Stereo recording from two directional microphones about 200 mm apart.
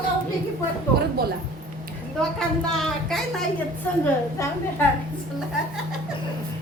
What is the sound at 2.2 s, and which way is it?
A woman's voice, centre (ahead or behind).